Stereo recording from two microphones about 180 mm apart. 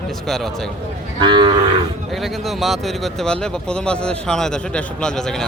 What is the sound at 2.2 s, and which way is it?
Speech, centre (ahead or behind).